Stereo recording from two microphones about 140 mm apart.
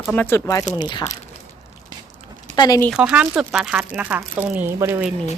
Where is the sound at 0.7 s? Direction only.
30° left (ahead or behind).